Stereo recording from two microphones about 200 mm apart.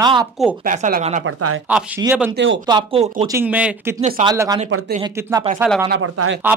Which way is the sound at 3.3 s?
10° right (ahead or behind).